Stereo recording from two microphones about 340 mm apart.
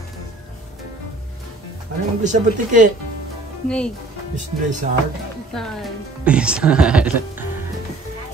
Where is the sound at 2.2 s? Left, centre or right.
Right.